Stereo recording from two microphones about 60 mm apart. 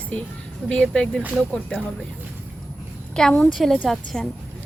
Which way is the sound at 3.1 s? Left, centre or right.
Centre.